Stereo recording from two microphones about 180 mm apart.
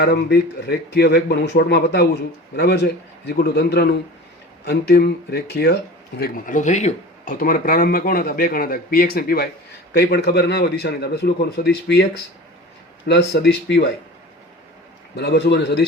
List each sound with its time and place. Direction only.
0.0 s a man's voice: 60° left (ahead or behind)
13.1 s speech: 70° left (ahead or behind)
15.1 s speech: 70° left (ahead or behind)